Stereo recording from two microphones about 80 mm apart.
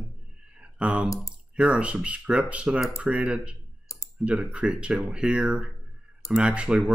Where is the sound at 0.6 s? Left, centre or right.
Centre.